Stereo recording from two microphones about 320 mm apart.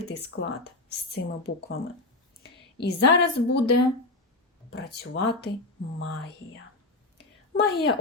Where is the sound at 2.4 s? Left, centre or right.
Left.